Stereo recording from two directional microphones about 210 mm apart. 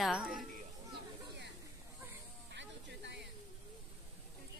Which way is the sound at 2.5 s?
55° right (ahead or behind).